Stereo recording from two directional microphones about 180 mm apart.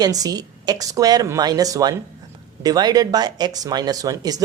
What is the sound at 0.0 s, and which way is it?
Speech, 20° right (ahead or behind).